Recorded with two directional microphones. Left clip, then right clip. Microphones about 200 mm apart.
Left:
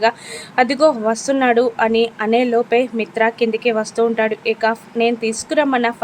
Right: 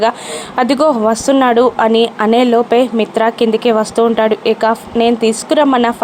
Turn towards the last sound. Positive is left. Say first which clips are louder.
# right 5 dB
turn(degrees=-20)  # may be behind; listen again after turning